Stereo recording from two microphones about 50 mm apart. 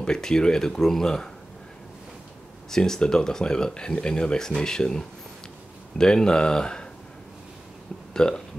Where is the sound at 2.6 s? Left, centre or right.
Centre.